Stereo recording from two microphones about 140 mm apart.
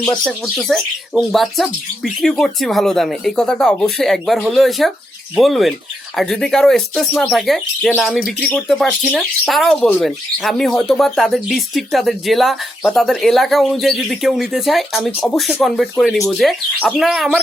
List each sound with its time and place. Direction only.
0.0 s speech: 5° left (ahead or behind)